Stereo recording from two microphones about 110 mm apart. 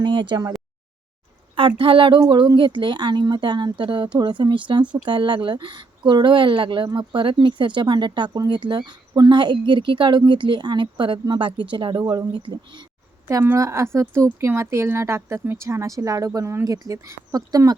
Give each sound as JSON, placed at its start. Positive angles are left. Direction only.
{"t": 0.0, "sound": "speech", "side_deg": -45}
{"t": 1.5, "sound": "speech", "side_deg": -55}
{"t": 13.2, "sound": "a woman's voice", "side_deg": -25}